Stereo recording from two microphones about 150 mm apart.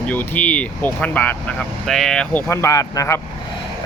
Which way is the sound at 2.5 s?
20° left (ahead or behind).